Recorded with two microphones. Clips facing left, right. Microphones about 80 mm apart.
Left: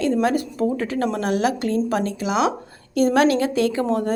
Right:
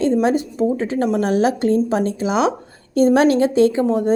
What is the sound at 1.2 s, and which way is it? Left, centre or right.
A woman's voice, right.